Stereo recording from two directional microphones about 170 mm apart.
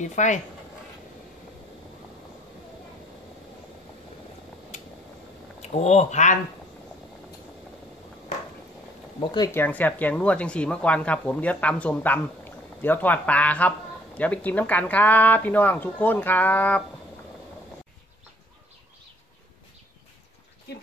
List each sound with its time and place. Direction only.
0.0 s speech: 45° left (ahead or behind)
5.6 s speech: 40° left (ahead or behind)
9.3 s speech: 25° left (ahead or behind)
9.6 s speech: 10° left (ahead or behind)